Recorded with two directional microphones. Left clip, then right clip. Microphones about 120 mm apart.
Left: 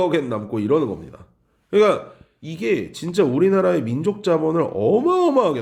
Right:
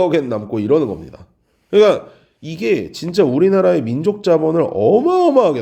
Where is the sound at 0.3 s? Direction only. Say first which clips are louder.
Right 4 dB; 30° right (ahead or behind).